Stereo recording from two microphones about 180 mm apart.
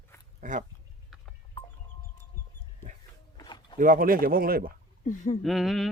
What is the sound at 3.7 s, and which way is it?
Speech, 50° right (ahead or behind).